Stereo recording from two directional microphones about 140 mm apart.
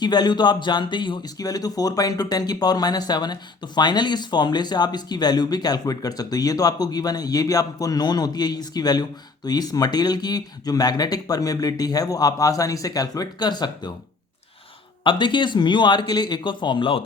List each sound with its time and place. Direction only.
0.0 s speech: 30° left (ahead or behind)
15.0 s speech: 35° left (ahead or behind)